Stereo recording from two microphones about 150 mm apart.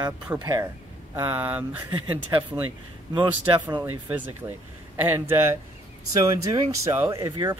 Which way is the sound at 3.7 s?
15° right (ahead or behind).